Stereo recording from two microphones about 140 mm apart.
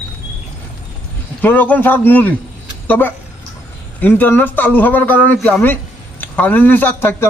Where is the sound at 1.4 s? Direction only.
15° left (ahead or behind).